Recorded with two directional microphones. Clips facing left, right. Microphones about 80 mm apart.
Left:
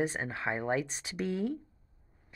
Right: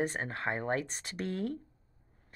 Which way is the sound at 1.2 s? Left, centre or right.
Right.